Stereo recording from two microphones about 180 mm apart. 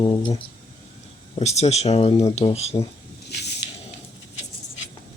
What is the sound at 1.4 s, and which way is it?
Speech, 35° left (ahead or behind).